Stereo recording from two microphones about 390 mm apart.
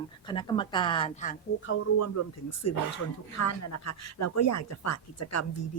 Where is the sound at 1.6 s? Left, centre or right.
Left.